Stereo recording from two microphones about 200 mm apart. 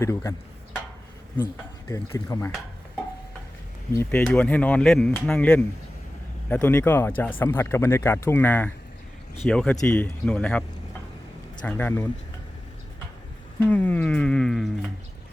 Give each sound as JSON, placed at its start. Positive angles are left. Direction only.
{"t": 0.0, "sound": "speech", "side_deg": 15}
{"t": 1.9, "sound": "speech", "side_deg": 15}
{"t": 3.9, "sound": "speech", "side_deg": 5}
{"t": 11.6, "sound": "speech", "side_deg": 10}
{"t": 13.6, "sound": "speech", "side_deg": 10}